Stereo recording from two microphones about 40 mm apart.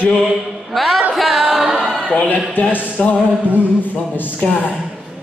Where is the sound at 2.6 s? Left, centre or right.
Left.